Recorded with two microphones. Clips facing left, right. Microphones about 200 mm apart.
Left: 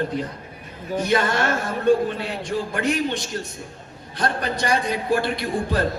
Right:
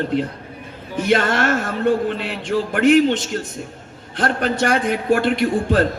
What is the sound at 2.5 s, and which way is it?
Speech, 90° right.